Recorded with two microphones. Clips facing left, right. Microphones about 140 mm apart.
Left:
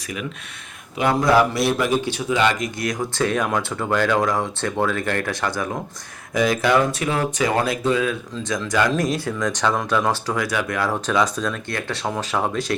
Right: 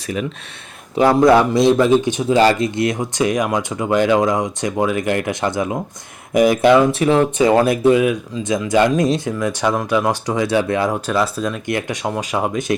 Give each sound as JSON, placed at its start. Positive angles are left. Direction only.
{"t": 1.4, "sound": "speech", "side_deg": -25}
{"t": 2.3, "sound": "speech", "side_deg": -35}
{"t": 2.7, "sound": "speech", "side_deg": -25}
{"t": 9.4, "sound": "speech", "side_deg": -10}
{"t": 10.9, "sound": "speech", "side_deg": -5}